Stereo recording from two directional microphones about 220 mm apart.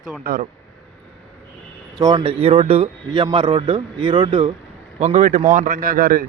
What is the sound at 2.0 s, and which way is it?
A man's voice, 20° right (ahead or behind).